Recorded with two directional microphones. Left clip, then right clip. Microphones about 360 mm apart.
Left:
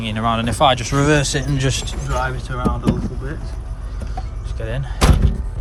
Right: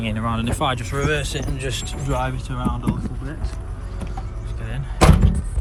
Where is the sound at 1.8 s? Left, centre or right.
Centre.